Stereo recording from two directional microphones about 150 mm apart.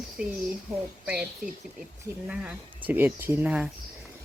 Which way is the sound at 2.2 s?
10° right (ahead or behind).